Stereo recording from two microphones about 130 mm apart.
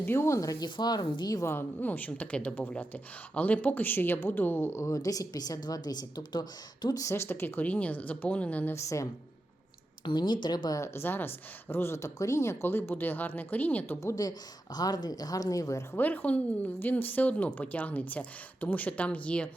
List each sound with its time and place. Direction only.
0.0 s speech: 20° left (ahead or behind)
10.0 s speech: 35° left (ahead or behind); by 19.5 s 10° left (ahead or behind)